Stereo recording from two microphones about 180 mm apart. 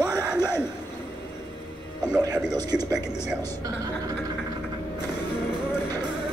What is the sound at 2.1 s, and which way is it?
Speech, 20° right (ahead or behind).